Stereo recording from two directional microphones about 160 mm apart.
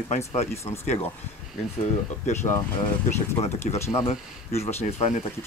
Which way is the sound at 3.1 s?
45° left (ahead or behind).